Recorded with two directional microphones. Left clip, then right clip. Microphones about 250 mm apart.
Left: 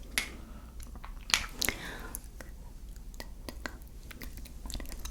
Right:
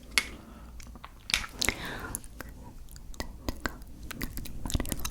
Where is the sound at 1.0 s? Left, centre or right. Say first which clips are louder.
Even; centre; by 2.5 s right.